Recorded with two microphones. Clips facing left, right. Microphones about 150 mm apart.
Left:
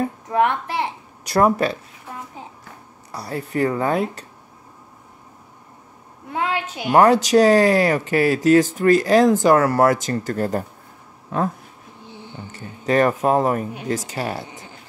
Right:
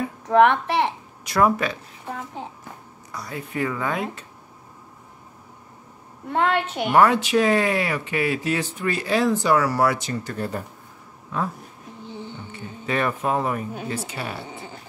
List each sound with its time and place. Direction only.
0.3 s a child's voice: 60° right (ahead or behind)
1.2 s speech: 35° left (ahead or behind)
3.1 s speech: 35° left (ahead or behind)
6.3 s a woman's voice: 70° right (ahead or behind)
6.9 s speech: 40° left (ahead or behind)
12.5 s speech: 40° left (ahead or behind)